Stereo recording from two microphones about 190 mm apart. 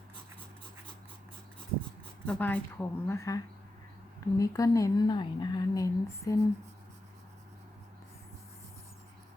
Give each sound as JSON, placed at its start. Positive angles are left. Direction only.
{"t": 2.2, "sound": "a woman's voice", "side_deg": 5}